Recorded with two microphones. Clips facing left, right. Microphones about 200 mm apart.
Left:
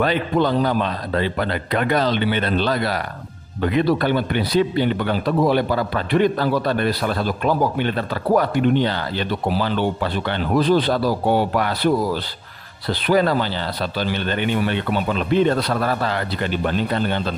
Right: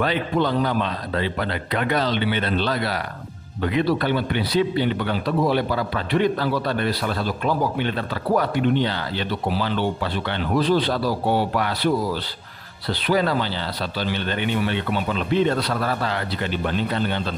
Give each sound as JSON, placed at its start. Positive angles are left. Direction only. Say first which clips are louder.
{"t": 0.0, "sound": "speech", "louder": "left 3 dB", "side_deg": 45}
{"t": 13.0, "sound": "speech", "louder": "left 3 dB", "side_deg": 50}